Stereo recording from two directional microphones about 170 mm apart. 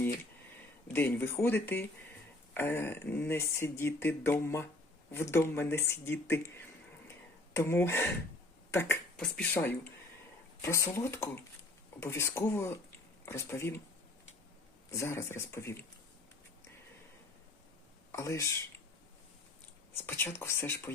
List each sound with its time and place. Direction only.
0.9 s speech: 10° left (ahead or behind)
7.1 s a sound: 15° left (ahead or behind)
8.7 s speech: 15° left (ahead or behind)
14.8 s speech: 15° left (ahead or behind)
18.1 s speech: 15° left (ahead or behind)
19.9 s speech: 15° left (ahead or behind)